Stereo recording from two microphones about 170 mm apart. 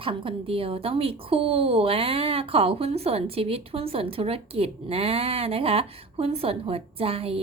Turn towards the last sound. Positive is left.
turn(degrees=-35)  # may be behind; listen again after turning